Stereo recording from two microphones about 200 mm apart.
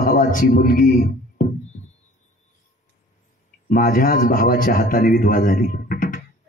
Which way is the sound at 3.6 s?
45° left (ahead or behind).